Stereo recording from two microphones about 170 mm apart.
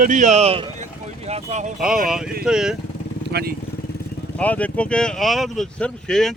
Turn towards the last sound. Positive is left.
turn(degrees=5)  # may be behind; listen again after turning